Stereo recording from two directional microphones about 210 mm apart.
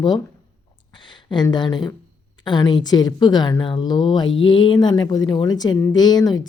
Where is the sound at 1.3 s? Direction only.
20° left (ahead or behind).